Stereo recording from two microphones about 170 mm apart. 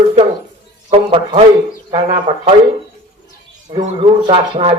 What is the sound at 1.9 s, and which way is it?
Speech, 30° right (ahead or behind).